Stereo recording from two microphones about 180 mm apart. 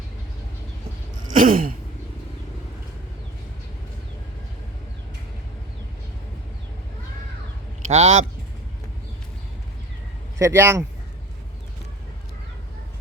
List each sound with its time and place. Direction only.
1.3 s sigh: 50° right (ahead or behind)
7.9 s speech: 35° right (ahead or behind)
10.3 s speech: 15° right (ahead or behind)